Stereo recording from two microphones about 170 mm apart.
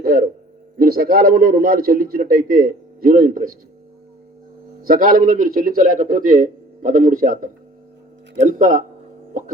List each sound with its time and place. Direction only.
0.0 s a man's voice: 60° right (ahead or behind)
4.8 s a man's voice: 55° right (ahead or behind)